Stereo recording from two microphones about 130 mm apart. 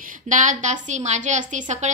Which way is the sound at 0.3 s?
75° right (ahead or behind).